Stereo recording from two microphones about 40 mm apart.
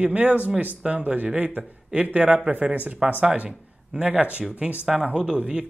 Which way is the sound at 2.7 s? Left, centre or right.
Right.